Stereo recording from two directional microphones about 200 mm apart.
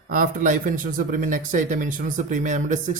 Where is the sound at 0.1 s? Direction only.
40° right (ahead or behind).